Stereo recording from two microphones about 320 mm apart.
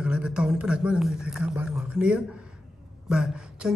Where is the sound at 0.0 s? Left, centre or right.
Centre.